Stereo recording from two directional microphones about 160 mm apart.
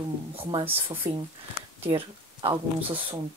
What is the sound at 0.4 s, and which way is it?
Speech, 30° right (ahead or behind).